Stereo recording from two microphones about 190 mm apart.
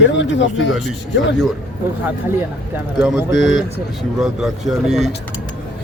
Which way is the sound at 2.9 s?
Centre (ahead or behind).